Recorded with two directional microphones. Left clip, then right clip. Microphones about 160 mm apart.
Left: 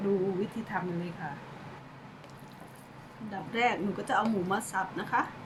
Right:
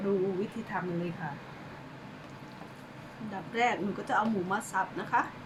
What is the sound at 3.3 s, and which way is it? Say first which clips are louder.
Speech: even; centre (ahead or behind).